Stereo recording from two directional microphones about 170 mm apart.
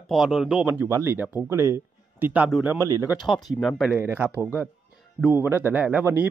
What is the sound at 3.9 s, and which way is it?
Speech, 10° right (ahead or behind).